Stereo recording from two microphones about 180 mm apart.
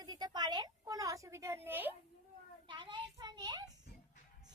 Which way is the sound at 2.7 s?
25° right (ahead or behind).